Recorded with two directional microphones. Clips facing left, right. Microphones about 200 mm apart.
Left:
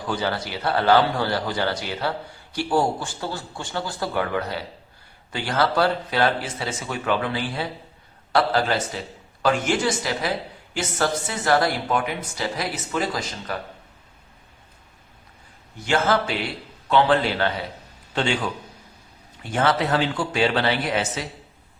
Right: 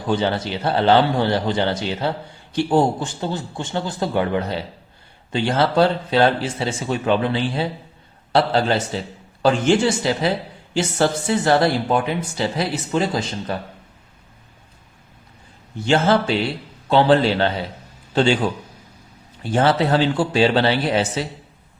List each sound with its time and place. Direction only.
0.0 s a man's voice: 25° right (ahead or behind)
15.8 s a man's voice: 30° right (ahead or behind)